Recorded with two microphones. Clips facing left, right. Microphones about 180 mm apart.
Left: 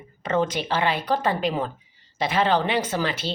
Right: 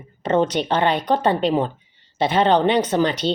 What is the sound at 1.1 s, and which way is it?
Speech, 30° right (ahead or behind).